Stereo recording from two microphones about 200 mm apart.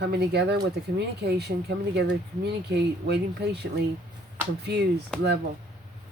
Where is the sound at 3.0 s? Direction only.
55° right (ahead or behind).